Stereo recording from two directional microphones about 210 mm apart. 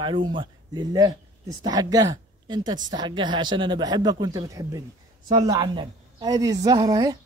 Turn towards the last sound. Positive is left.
turn(degrees=-15)  # may be behind; listen again after turning